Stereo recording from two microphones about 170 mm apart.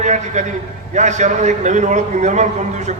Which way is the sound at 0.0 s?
45° right (ahead or behind).